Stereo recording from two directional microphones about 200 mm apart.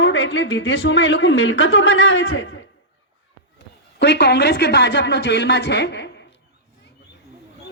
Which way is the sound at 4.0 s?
55° left (ahead or behind).